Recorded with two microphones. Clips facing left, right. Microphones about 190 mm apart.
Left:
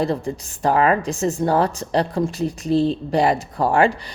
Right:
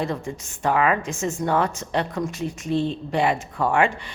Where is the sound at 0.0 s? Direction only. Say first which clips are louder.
Left 5 dB; 35° left (ahead or behind).